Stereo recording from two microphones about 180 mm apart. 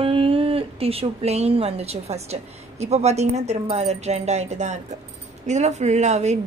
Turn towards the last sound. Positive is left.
turn(degrees=-40)  # may be behind; listen again after turning